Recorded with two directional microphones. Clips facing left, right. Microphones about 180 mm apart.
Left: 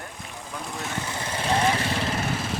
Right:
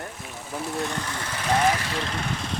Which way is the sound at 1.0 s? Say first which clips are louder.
Left 2 dB; 20° left (ahead or behind).